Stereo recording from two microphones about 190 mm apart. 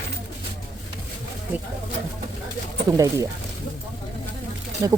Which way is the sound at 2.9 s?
15° right (ahead or behind).